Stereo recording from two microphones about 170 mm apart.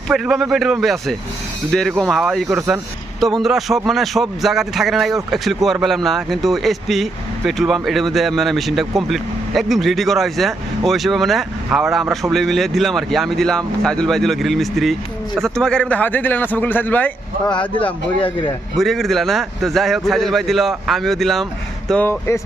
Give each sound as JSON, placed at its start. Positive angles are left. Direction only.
{"t": 0.1, "sound": "a man's voice", "side_deg": 0}
{"t": 17.4, "sound": "speech", "side_deg": 30}
{"t": 18.8, "sound": "a man's voice", "side_deg": 0}